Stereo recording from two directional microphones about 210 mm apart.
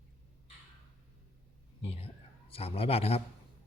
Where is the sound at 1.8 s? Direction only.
30° left (ahead or behind).